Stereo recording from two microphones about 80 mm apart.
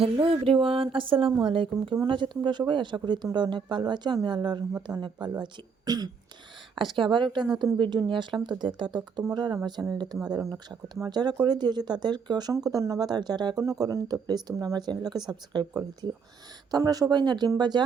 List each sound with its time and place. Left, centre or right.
0.2 s speech: right
2.0 s speech: right
4.9 s speech: right
5.4 s speech: right
6.7 s speech: right
13.1 s speech: right
13.6 s speech: right